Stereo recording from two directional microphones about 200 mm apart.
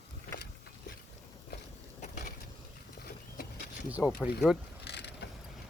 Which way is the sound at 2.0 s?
35° left (ahead or behind).